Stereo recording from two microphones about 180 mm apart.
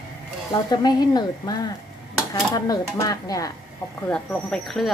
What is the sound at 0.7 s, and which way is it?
Speech, 25° left (ahead or behind).